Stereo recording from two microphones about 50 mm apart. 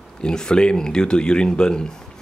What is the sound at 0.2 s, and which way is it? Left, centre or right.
Speech, centre.